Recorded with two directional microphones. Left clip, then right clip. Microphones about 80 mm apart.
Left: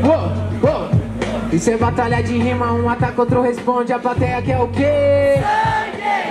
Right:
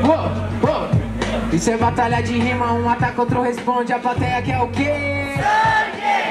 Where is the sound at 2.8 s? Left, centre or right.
Right.